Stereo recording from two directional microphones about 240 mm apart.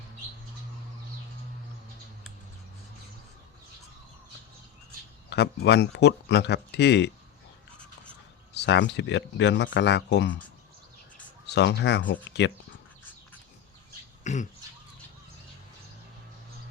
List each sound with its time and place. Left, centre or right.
5.3 s speech: left
8.5 s speech: left
11.4 s speech: left
14.3 s a sound: left